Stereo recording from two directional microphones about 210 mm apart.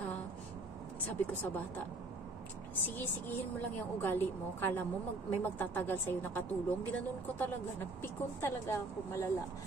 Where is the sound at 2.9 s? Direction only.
10° left (ahead or behind).